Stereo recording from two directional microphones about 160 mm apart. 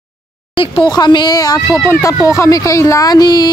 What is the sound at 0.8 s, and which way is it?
Speech, 25° left (ahead or behind).